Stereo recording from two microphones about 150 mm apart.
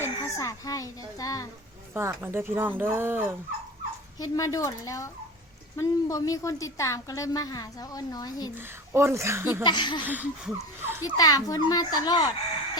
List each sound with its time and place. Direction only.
0.0 s a child's voice: 20° left (ahead or behind)
1.9 s speech: 15° right (ahead or behind)
4.2 s a woman's voice: 25° left (ahead or behind)
8.9 s speech: 15° right (ahead or behind)
9.6 s speech: 30° left (ahead or behind)
10.0 s speech: 10° right (ahead or behind)
11.2 s a woman's voice: 25° left (ahead or behind)